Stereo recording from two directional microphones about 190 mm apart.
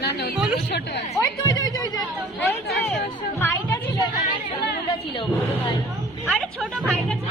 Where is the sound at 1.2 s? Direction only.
20° left (ahead or behind).